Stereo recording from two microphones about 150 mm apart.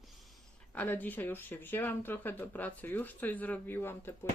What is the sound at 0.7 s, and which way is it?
Speech, 10° left (ahead or behind).